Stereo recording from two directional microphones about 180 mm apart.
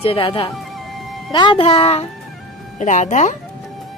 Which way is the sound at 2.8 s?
45° left (ahead or behind).